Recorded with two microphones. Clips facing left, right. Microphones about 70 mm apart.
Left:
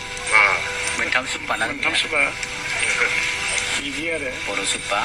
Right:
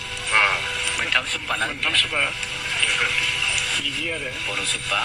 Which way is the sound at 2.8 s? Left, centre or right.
Left.